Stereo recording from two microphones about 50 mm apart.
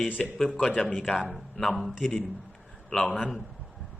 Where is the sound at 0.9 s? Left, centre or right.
Left.